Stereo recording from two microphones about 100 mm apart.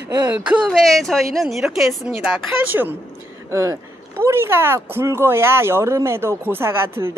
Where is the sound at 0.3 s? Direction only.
10° right (ahead or behind).